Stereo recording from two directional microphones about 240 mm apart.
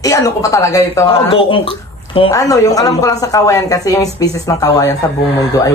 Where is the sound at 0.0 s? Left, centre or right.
Centre.